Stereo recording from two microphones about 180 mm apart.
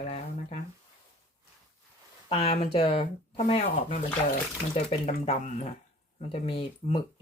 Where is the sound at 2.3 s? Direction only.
35° left (ahead or behind).